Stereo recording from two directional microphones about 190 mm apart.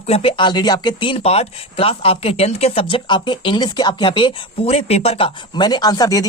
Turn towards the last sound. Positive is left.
turn(degrees=20)  # may be behind; listen again after turning